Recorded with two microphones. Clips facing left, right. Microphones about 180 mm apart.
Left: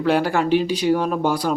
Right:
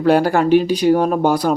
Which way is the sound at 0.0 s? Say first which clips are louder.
Right 5 dB; 40° right (ahead or behind).